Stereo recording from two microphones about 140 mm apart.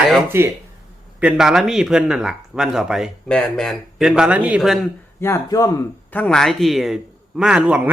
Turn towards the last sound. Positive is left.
turn(degrees=-10)  # may be behind; listen again after turning